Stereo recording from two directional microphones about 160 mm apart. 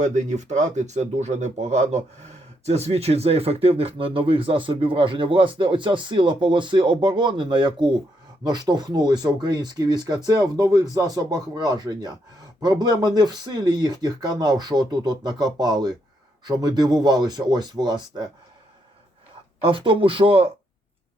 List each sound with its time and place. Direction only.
0.0 s speech: 45° right (ahead or behind); by 18.3 s 25° right (ahead or behind)
19.6 s speech: 35° right (ahead or behind)